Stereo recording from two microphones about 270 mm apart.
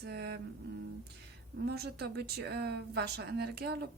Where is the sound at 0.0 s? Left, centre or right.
Right.